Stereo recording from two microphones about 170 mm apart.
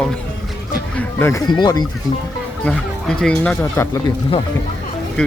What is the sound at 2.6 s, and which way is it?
Speech, 5° left (ahead or behind).